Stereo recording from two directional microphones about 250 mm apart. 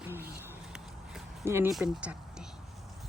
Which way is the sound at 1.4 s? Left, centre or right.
Centre.